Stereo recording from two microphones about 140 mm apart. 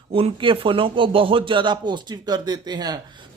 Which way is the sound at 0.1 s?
40° right (ahead or behind).